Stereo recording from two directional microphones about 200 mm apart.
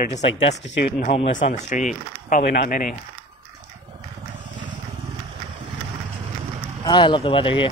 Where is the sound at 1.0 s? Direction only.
30° left (ahead or behind).